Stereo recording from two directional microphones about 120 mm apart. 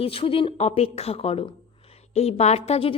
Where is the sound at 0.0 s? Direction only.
50° left (ahead or behind).